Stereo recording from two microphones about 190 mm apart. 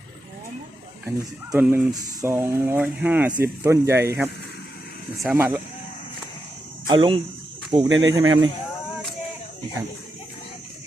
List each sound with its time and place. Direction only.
1.0 s speech: 10° right (ahead or behind)
6.8 s speech: 25° right (ahead or behind)
7.9 s speech: 90° right